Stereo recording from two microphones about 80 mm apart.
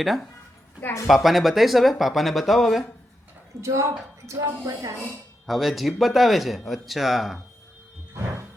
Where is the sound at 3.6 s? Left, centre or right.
Right.